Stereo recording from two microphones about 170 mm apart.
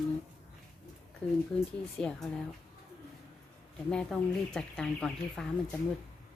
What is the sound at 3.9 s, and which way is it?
A woman's voice, 5° left (ahead or behind).